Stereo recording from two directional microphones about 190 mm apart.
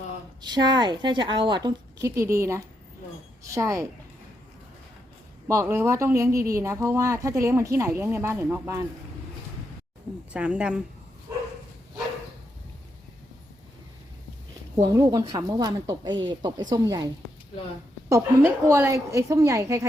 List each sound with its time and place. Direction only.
0.4 s a woman's voice: 25° right (ahead or behind)
5.5 s speech: 15° right (ahead or behind)
10.3 s speech: 5° right (ahead or behind)
14.8 s a woman's voice: 20° right (ahead or behind)
18.1 s speech: 10° right (ahead or behind)